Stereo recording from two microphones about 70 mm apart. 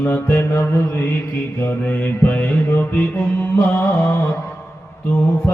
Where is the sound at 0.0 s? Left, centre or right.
Left.